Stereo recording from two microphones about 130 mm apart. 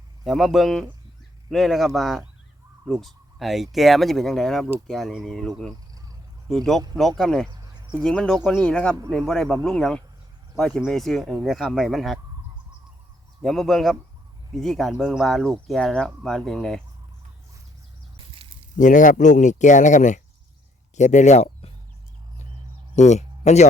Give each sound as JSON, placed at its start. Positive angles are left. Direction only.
{"t": 0.3, "sound": "speech", "side_deg": 0}
{"t": 7.6, "sound": "a sound", "side_deg": -35}
{"t": 8.0, "sound": "speech", "side_deg": 5}
{"t": 13.4, "sound": "speech", "side_deg": 0}
{"t": 18.8, "sound": "speech", "side_deg": 80}
{"t": 23.0, "sound": "speech", "side_deg": 60}